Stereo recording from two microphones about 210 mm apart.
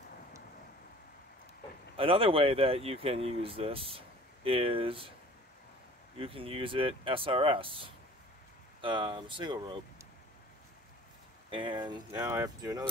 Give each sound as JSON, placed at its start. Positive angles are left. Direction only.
{"t": 2.0, "sound": "speech", "side_deg": -25}
{"t": 6.1, "sound": "speech", "side_deg": -25}
{"t": 11.5, "sound": "speech", "side_deg": -25}